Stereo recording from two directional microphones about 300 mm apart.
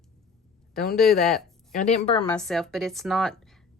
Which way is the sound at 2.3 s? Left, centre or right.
Centre.